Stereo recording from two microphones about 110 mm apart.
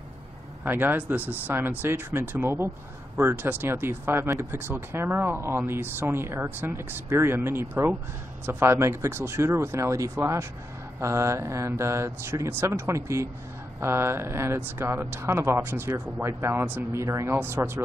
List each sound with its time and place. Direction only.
0.7 s speech: 20° right (ahead or behind)